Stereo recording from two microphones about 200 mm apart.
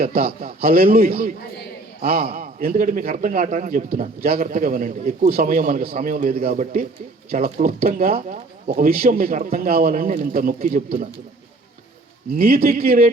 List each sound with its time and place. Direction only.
0.0 s a man's voice: 50° right (ahead or behind)
12.4 s a man's voice: 45° right (ahead or behind)